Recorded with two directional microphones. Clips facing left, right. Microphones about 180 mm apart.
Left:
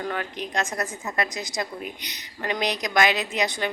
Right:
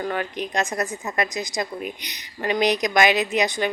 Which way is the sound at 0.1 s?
15° right (ahead or behind).